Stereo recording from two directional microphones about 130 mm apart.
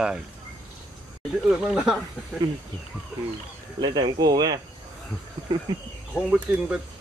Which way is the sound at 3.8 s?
35° right (ahead or behind).